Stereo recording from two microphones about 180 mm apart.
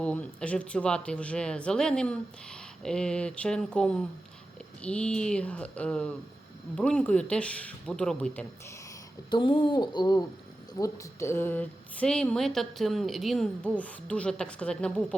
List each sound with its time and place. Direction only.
0.0 s a woman's voice: 5° left (ahead or behind)
9.3 s a woman's voice: 25° left (ahead or behind); by 15.0 s 5° left (ahead or behind)